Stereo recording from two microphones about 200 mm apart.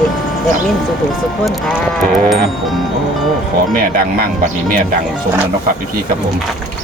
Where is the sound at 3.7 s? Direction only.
45° right (ahead or behind).